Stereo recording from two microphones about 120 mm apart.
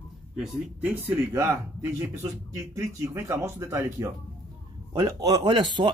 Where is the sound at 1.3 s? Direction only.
25° right (ahead or behind).